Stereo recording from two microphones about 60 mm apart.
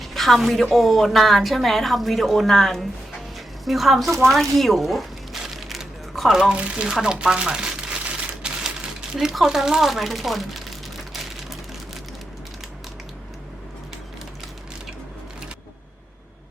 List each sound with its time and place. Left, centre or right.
0.0 s a woman's voice: centre
3.3 s a sound: centre
6.5 s speech: centre
8.4 s typewriter: centre
9.1 s a woman's voice: centre